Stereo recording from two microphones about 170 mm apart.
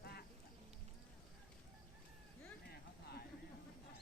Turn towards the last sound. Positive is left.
turn(degrees=65)  # may be behind; listen again after turning